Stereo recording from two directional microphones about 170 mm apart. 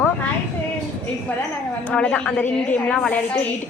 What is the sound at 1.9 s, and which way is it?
A woman's voice, 5° left (ahead or behind).